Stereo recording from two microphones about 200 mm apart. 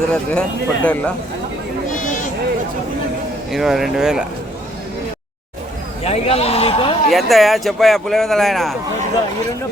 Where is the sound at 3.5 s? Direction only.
Centre (ahead or behind).